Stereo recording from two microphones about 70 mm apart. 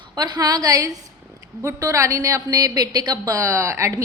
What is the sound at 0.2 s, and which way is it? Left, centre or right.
Speech, right.